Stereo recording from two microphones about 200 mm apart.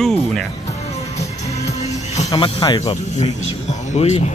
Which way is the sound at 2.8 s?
35° left (ahead or behind).